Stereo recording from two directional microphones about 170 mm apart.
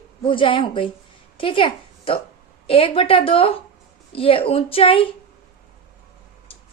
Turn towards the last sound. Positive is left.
turn(degrees=30)  # may be behind; listen again after turning